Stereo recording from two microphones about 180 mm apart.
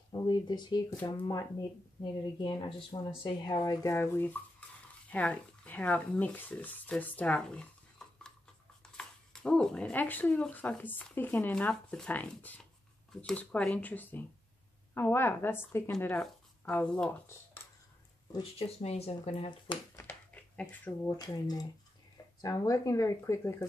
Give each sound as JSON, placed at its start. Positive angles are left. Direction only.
{"t": 0.1, "sound": "speech", "side_deg": 20}
{"t": 8.0, "sound": "a sound", "side_deg": 5}
{"t": 8.9, "sound": "speech", "side_deg": 5}
{"t": 18.6, "sound": "speech", "side_deg": 35}
{"t": 20.0, "sound": "speech", "side_deg": 10}